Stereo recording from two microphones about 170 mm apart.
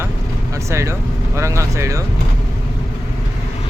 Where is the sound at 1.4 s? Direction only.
15° right (ahead or behind).